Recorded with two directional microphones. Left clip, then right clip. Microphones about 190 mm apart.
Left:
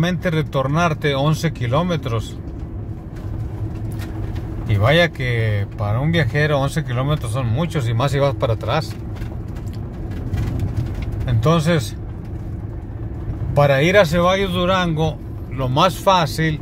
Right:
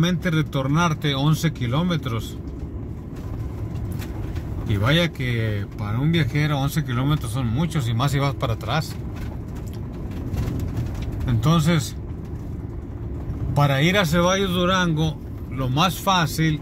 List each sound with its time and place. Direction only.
0.0 s speech: 20° left (ahead or behind)
4.6 s speech: 20° left (ahead or behind)
11.2 s speech: 15° left (ahead or behind)
13.5 s speech: 15° left (ahead or behind)